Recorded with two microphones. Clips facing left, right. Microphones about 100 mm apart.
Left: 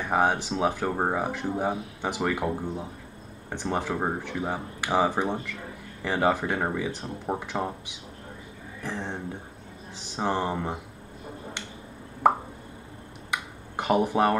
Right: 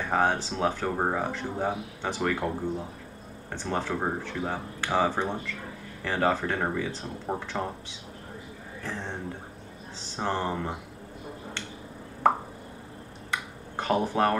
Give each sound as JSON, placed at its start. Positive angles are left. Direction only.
{"t": 0.1, "sound": "speech", "side_deg": 15}
{"t": 8.8, "sound": "speech", "side_deg": 15}
{"t": 12.2, "sound": "plop", "side_deg": 15}
{"t": 13.3, "sound": "finger snapping", "side_deg": 15}